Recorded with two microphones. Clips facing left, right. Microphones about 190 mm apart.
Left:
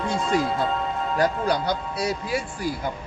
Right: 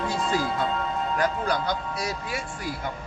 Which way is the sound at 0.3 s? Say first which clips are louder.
Left 4 dB; centre (ahead or behind).